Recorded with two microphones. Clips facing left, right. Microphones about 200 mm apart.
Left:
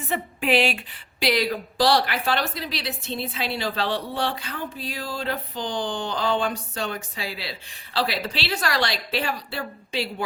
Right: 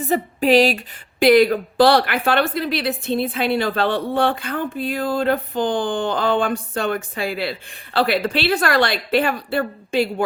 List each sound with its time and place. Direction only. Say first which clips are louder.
0.0 s speech: right 8 dB; 40° right (ahead or behind)
1.2 s a woman's voice: right 10 dB; 50° right (ahead or behind)